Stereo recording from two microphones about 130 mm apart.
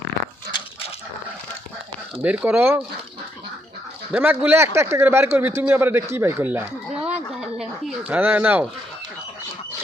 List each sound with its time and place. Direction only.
2.2 s a man's voice: 10° right (ahead or behind)
4.1 s a man's voice: 15° right (ahead or behind)
7.6 s a sound: 10° right (ahead or behind)